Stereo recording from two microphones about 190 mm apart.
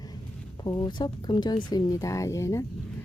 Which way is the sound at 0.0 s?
20° left (ahead or behind).